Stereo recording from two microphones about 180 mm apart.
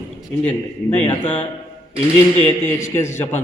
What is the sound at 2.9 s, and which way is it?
Speech, 15° left (ahead or behind).